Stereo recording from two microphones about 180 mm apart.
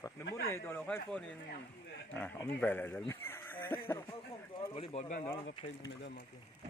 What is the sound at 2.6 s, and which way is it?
Speech, 10° left (ahead or behind).